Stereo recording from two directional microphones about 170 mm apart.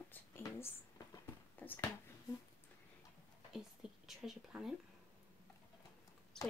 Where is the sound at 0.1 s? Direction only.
15° left (ahead or behind).